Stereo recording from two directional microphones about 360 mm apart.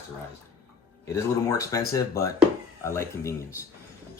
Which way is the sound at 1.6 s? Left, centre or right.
Centre.